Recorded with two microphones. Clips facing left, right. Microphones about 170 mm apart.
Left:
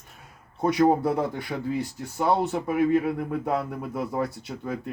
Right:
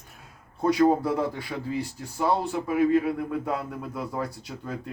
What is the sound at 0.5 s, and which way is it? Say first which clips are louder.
Speech: even; 20° left (ahead or behind).